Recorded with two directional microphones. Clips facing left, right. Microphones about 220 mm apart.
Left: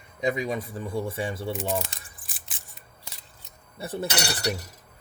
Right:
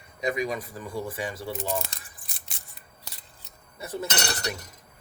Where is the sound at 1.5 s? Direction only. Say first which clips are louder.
Left 2 dB; centre (ahead or behind).